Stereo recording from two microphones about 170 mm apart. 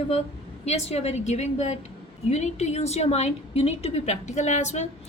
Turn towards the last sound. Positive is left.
turn(degrees=40)  # may be behind; listen again after turning